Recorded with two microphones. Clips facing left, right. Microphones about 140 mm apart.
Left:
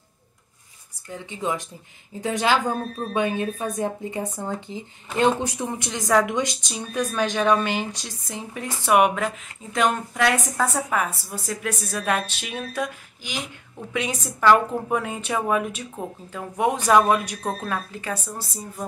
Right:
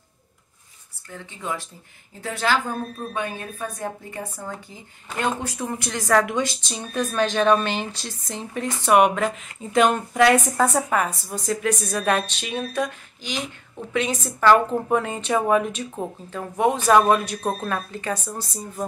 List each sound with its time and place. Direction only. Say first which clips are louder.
1.1 s speech: left 3 dB; 20° left (ahead or behind)
17.4 s speech: right 2 dB; 15° right (ahead or behind)
17.6 s speech: right 2 dB; 10° left (ahead or behind)